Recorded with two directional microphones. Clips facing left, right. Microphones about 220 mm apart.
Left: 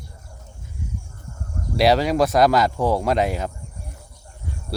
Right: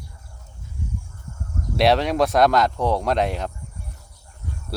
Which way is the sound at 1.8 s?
Centre (ahead or behind).